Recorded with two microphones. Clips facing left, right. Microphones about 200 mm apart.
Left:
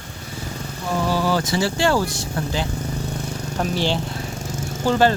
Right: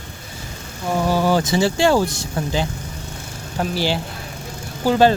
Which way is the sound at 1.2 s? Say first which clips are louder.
Right 3 dB; 20° right (ahead or behind).